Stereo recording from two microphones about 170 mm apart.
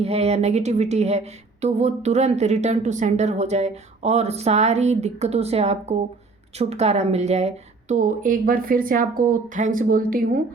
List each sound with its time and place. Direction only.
0.0 s speech: 40° right (ahead or behind); by 10.4 s 55° right (ahead or behind)